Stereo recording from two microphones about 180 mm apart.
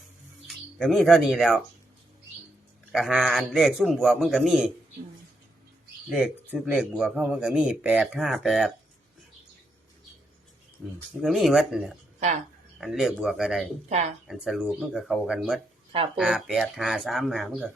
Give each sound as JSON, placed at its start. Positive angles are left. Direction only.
{"t": 0.4, "sound": "speech", "side_deg": 0}
{"t": 2.9, "sound": "speech", "side_deg": 0}
{"t": 6.1, "sound": "speech", "side_deg": -5}
{"t": 11.2, "sound": "speech", "side_deg": 0}
{"t": 13.9, "sound": "speech", "side_deg": -40}
{"t": 14.3, "sound": "speech", "side_deg": 0}